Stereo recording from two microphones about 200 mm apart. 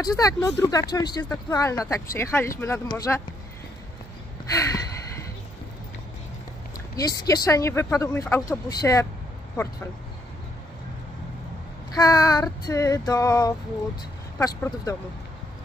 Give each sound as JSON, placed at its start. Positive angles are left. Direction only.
{"t": 0.0, "sound": "speech", "side_deg": 15}
{"t": 4.6, "sound": "speech", "side_deg": 15}
{"t": 7.0, "sound": "speech", "side_deg": 20}
{"t": 11.9, "sound": "speech", "side_deg": 20}